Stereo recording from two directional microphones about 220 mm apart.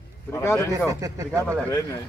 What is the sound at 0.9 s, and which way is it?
Speech, 15° right (ahead or behind).